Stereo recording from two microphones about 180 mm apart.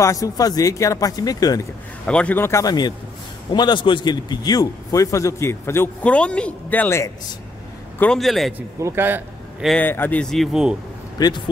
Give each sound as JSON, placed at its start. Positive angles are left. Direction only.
{"t": 0.0, "sound": "speech", "side_deg": 20}
{"t": 2.0, "sound": "a man's voice", "side_deg": 5}
{"t": 8.7, "sound": "a man's voice", "side_deg": -15}
{"t": 9.7, "sound": "a man's voice", "side_deg": 10}
{"t": 11.1, "sound": "speech", "side_deg": 20}